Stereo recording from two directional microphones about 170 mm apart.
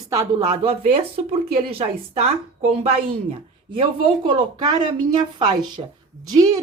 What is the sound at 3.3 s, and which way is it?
Speech, 30° right (ahead or behind).